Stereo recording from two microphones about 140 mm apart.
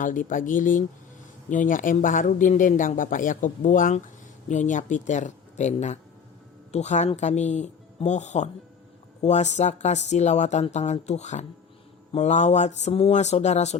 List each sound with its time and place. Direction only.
0.0 s speech: 70° left (ahead or behind)
4.4 s speech: 60° left (ahead or behind)